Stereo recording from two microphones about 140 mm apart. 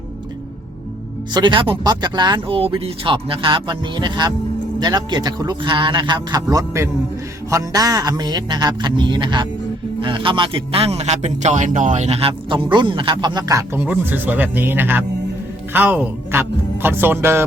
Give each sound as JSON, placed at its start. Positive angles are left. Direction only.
{"t": 1.3, "sound": "a man's voice", "side_deg": -35}
{"t": 13.8, "sound": "speech", "side_deg": -15}